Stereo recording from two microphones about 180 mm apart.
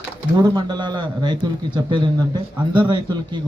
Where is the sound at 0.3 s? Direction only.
25° right (ahead or behind).